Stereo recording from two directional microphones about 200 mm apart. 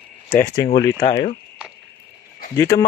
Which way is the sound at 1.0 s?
30° left (ahead or behind).